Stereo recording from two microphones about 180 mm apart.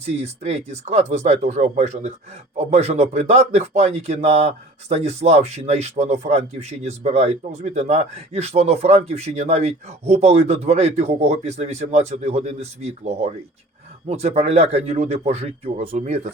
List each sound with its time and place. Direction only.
0.0 s a man's voice: 35° right (ahead or behind)